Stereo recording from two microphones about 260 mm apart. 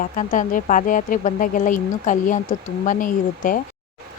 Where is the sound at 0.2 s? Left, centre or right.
Left.